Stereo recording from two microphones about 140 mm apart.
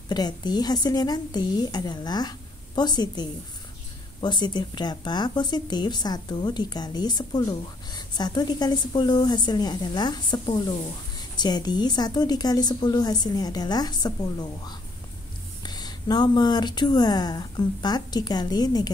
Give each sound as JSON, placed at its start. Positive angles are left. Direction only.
{"t": 0.1, "sound": "speech", "side_deg": 30}